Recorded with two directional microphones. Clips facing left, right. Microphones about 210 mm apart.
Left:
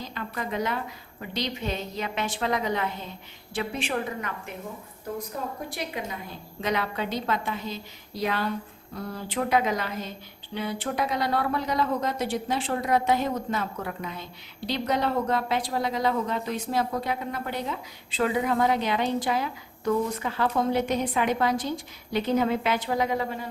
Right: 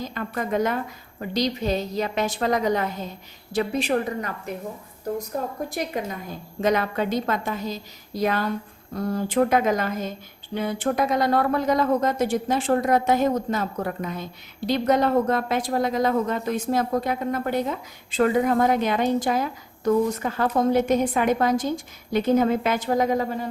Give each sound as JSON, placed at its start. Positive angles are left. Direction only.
{"t": 0.0, "sound": "a woman's voice", "side_deg": -45}
{"t": 5.6, "sound": "a woman's voice", "side_deg": -45}